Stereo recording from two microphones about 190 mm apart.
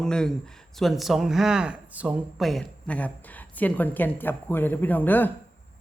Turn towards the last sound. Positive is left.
turn(degrees=10)  # may be behind; listen again after turning